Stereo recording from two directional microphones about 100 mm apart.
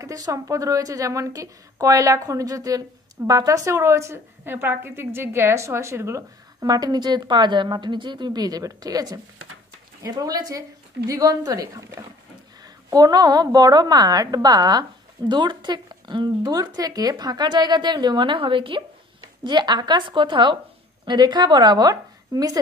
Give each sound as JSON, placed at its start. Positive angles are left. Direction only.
{"t": 0.0, "sound": "a woman's voice", "side_deg": -35}
{"t": 6.6, "sound": "a woman's voice", "side_deg": -40}
{"t": 19.4, "sound": "a woman's voice", "side_deg": -50}